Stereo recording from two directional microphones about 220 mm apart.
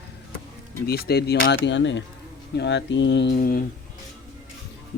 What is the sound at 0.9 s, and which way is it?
Speech, 45° left (ahead or behind).